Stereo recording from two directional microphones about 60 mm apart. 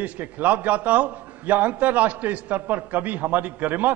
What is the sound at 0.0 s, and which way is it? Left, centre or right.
A man's voice, right.